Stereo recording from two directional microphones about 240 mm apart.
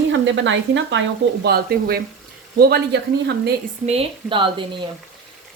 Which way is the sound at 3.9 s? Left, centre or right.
Right.